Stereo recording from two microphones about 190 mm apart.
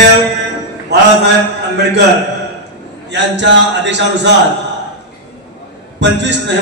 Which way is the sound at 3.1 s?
65° right (ahead or behind).